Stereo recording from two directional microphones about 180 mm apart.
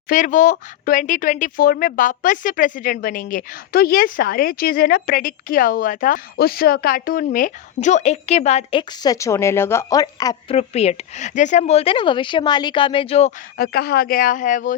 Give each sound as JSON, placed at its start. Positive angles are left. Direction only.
{"t": 0.1, "sound": "speech", "side_deg": 45}
{"t": 8.8, "sound": "a woman's voice", "side_deg": 20}
{"t": 10.5, "sound": "speech", "side_deg": 35}
{"t": 13.6, "sound": "speech", "side_deg": 60}